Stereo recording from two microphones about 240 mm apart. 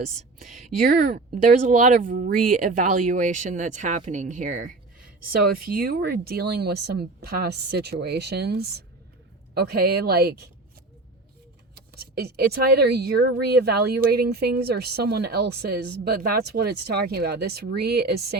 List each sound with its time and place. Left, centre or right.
0.0 s speech: right
11.7 s speech: right